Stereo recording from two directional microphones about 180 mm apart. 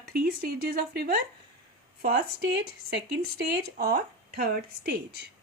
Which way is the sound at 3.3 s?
60° right (ahead or behind).